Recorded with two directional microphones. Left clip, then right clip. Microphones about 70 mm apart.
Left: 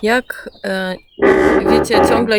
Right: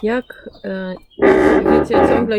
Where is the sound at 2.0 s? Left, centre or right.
Left.